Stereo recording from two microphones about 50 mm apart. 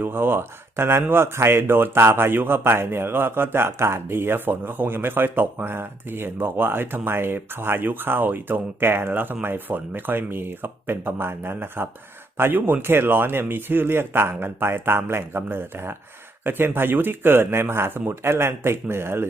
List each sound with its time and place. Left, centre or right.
0.0 s speech: right